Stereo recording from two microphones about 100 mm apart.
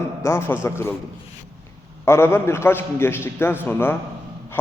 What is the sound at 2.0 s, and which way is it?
A man's voice, 25° left (ahead or behind).